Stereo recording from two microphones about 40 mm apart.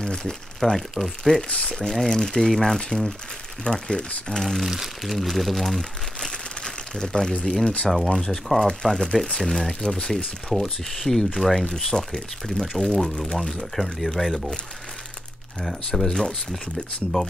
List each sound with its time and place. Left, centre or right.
0.0 s a sound: centre
0.6 s speech: centre
1.5 s speech: left
1.8 s speech: centre
3.6 s speech: left
4.3 s speech: centre
4.6 s speech: centre
7.9 s speech: centre
8.9 s speech: centre
15.9 s speech: centre